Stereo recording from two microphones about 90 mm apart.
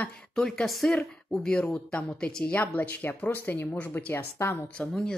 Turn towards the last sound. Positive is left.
turn(degrees=5)  # may be behind; listen again after turning